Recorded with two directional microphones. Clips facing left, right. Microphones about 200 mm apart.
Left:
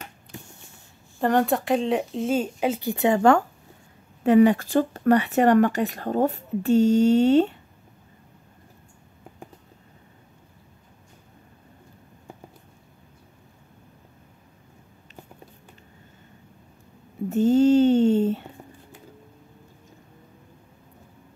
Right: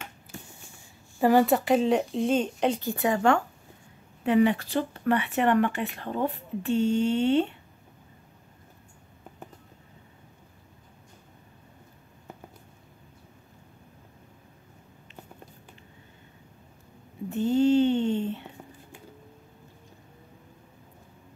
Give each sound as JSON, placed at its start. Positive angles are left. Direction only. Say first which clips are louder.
{"t": 1.2, "sound": "speech", "louder": "right 1 dB", "side_deg": -5}
{"t": 2.8, "sound": "speech", "louder": "left 5 dB", "side_deg": 20}
{"t": 3.2, "sound": "speech", "louder": "left 5 dB", "side_deg": 40}
{"t": 17.3, "sound": "a sound", "louder": "left 5 dB", "side_deg": 40}